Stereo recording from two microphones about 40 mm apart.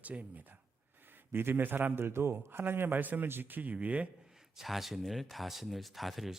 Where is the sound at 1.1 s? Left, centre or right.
Right.